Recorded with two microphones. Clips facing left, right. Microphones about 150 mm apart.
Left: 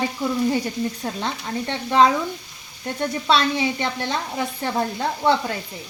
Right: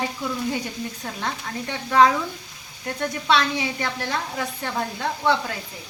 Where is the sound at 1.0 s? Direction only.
30° left (ahead or behind).